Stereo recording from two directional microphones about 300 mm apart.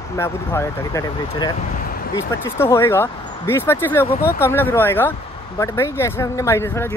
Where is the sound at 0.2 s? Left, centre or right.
Centre.